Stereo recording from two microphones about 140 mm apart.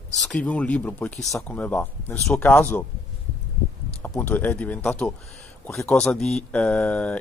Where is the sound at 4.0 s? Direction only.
15° left (ahead or behind).